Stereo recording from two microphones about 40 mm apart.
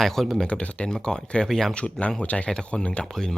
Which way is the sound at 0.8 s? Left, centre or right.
Centre.